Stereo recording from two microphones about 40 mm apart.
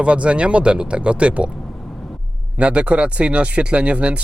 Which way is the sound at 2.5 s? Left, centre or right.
Right.